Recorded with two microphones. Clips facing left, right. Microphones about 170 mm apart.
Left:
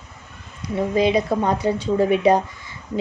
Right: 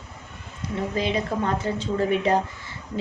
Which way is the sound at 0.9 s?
15° left (ahead or behind).